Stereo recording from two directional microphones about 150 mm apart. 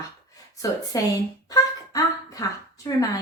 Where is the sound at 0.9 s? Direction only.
25° left (ahead or behind).